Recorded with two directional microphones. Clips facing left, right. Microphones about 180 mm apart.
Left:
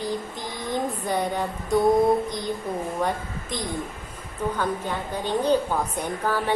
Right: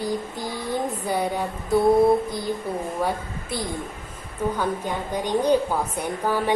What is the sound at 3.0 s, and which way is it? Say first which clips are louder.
A woman's voice: right 1 dB; 5° right (ahead or behind).